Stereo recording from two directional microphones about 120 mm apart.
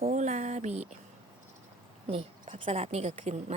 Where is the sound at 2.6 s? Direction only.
60° right (ahead or behind); by 3.5 s 75° right (ahead or behind).